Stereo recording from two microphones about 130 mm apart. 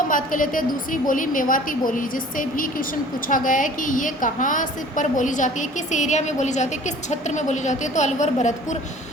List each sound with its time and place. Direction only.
0.1 s a woman's voice: 90° left; by 8.8 s 65° left (ahead or behind)